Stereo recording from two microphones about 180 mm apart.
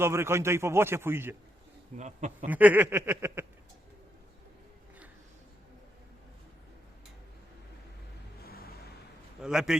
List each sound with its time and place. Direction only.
0.0 s a man's voice: 15° right (ahead or behind)
2.0 s speech: 40° right (ahead or behind)
2.5 s a man's voice: 10° right (ahead or behind)
8.4 s vehicle: 60° left (ahead or behind)
9.4 s a man's voice: 5° right (ahead or behind)